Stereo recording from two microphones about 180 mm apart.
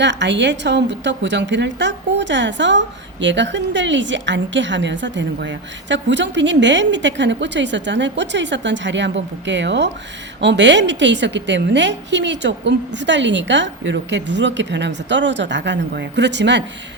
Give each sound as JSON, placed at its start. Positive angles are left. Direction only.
{"t": 0.0, "sound": "a woman's voice", "side_deg": -80}